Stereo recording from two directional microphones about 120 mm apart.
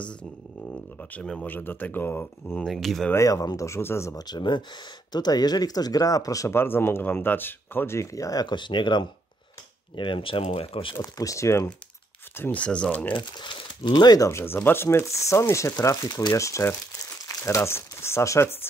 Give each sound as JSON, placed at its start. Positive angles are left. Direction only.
{"t": 1.1, "sound": "speech", "side_deg": 10}
{"t": 2.6, "sound": "speech", "side_deg": 0}
{"t": 3.1, "sound": "speech", "side_deg": 25}
{"t": 4.2, "sound": "speech", "side_deg": 35}
{"t": 11.0, "sound": "speech", "side_deg": 25}
{"t": 13.1, "sound": "speech", "side_deg": 40}